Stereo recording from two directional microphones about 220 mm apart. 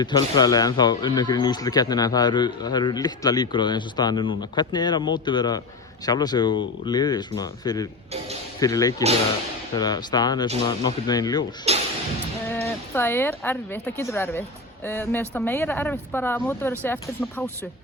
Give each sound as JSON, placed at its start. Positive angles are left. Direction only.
{"t": 0.0, "sound": "speech", "side_deg": 20}
{"t": 11.7, "sound": "speech", "side_deg": -30}
{"t": 12.5, "sound": "speech", "side_deg": 10}